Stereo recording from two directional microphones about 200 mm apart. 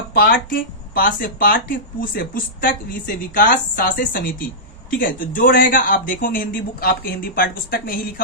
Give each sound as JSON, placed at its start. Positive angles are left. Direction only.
{"t": 0.1, "sound": "speech", "side_deg": 45}